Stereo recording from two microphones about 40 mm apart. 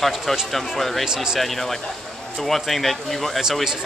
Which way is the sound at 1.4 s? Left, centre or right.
Centre.